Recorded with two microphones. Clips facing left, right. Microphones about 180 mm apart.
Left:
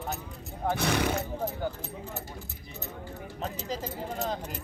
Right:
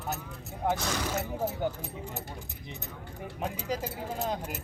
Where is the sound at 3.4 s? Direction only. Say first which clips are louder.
Right 1 dB; 10° right (ahead or behind).